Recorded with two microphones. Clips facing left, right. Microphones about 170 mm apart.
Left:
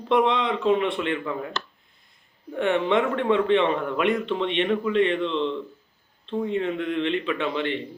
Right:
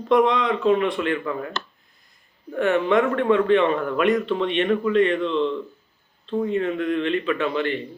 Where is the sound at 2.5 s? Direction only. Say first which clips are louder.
Right 3 dB; 25° left (ahead or behind).